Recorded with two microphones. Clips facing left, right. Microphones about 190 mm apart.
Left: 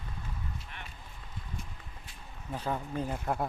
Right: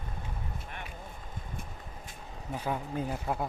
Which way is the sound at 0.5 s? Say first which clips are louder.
Right 4 dB; 50° right (ahead or behind).